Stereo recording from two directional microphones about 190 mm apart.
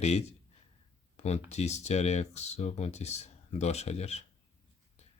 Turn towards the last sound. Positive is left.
turn(degrees=35)  # may be behind; listen again after turning